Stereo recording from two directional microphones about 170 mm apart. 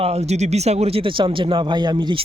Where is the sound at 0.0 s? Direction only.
40° right (ahead or behind).